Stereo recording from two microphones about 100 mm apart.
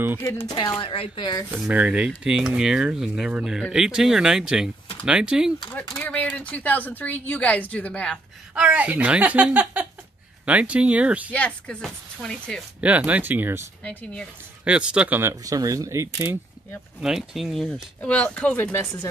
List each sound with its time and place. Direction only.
0.5 s speech: 40° left (ahead or behind)
0.7 s speech: 65° left (ahead or behind)
1.7 s speech: 10° right (ahead or behind)
5.9 s a sound: 15° left (ahead or behind)
6.5 s a woman's voice: 15° left (ahead or behind)
8.5 s speech: 10° right (ahead or behind)
11.3 s a woman's voice: 10° left (ahead or behind)
12.8 s speech: 15° right (ahead or behind)
14.6 s speech: 10° right (ahead or behind)
15.4 s speech: 35° right (ahead or behind)
17.0 s speech: 5° right (ahead or behind)
18.0 s a woman's voice: 10° left (ahead or behind)